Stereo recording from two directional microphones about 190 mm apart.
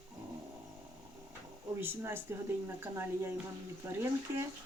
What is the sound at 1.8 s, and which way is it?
Speech, 10° right (ahead or behind).